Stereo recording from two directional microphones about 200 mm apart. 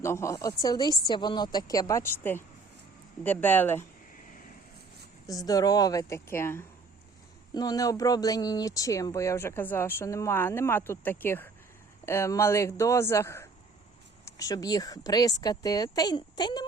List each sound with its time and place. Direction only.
0.0 s speech: 15° left (ahead or behind)
5.2 s speech: 15° left (ahead or behind)